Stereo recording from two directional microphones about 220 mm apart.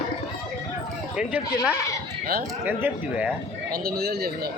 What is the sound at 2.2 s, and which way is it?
Speech, 45° right (ahead or behind).